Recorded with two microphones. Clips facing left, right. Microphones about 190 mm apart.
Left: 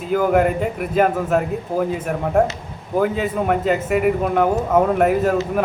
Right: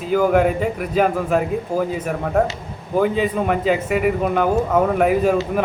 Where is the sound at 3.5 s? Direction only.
Centre (ahead or behind).